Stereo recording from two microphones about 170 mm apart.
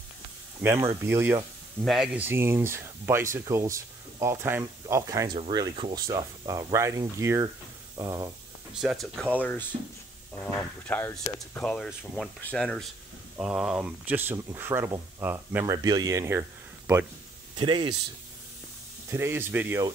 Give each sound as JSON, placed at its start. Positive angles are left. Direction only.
{"t": 0.6, "sound": "speech", "side_deg": -15}
{"t": 8.7, "sound": "speech", "side_deg": 0}
{"t": 9.4, "sound": "speech", "side_deg": 10}
{"t": 17.6, "sound": "speech", "side_deg": -30}
{"t": 19.0, "sound": "speech", "side_deg": -15}